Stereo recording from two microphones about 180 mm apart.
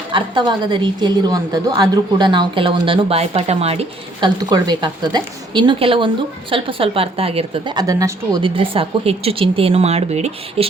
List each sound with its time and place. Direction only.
0.1 s a woman's voice: 25° right (ahead or behind)
4.4 s a woman's voice: 20° right (ahead or behind)